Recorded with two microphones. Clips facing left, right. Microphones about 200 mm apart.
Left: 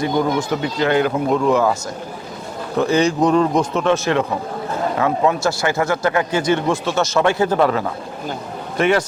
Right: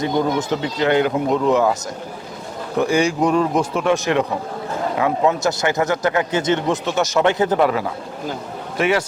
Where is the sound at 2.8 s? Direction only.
10° right (ahead or behind).